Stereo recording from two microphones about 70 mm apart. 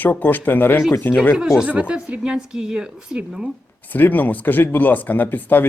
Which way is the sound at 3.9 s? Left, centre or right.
Left.